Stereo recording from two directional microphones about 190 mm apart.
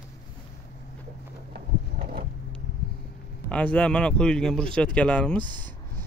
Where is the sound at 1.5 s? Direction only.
55° right (ahead or behind).